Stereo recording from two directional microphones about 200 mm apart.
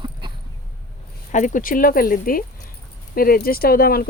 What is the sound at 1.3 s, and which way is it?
Speech, 40° left (ahead or behind).